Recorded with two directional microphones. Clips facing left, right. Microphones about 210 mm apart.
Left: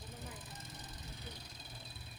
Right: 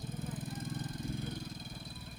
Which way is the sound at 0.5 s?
50° right (ahead or behind).